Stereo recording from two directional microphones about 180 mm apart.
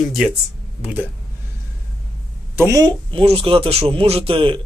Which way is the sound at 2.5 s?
15° right (ahead or behind).